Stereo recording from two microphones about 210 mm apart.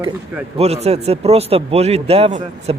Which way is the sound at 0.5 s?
30° right (ahead or behind).